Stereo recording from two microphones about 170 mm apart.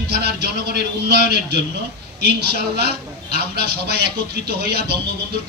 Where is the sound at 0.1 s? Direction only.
75° right (ahead or behind).